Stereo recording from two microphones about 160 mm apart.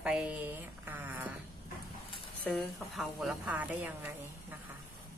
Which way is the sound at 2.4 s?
Centre (ahead or behind).